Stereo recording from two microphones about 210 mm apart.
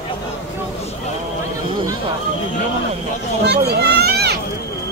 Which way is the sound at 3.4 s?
50° right (ahead or behind).